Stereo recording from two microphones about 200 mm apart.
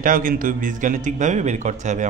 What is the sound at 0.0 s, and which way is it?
A man's voice, 45° right (ahead or behind).